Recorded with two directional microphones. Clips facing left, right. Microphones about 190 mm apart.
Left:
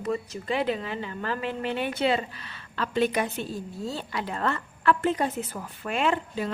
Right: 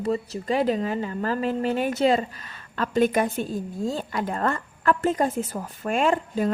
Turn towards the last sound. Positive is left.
turn(degrees=-45)  # may be behind; listen again after turning